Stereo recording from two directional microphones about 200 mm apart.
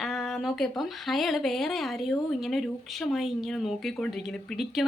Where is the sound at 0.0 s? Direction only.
Centre (ahead or behind).